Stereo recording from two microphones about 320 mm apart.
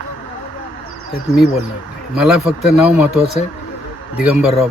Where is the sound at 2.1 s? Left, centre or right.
Centre.